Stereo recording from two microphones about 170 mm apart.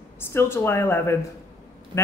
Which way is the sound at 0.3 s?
15° left (ahead or behind).